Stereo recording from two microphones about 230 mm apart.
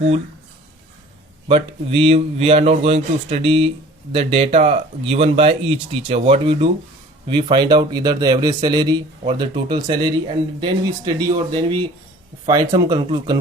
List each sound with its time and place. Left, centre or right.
1.5 s a man's voice: right